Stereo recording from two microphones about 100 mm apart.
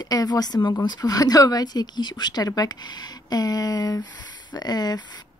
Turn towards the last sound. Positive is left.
turn(degrees=40)  # may be behind; listen again after turning